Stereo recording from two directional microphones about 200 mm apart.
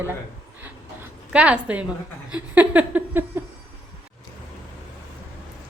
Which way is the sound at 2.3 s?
5° right (ahead or behind).